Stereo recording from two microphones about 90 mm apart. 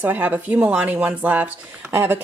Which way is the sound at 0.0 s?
20° right (ahead or behind).